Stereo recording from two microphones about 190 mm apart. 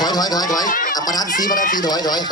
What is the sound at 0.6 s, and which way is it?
Speech, 45° left (ahead or behind).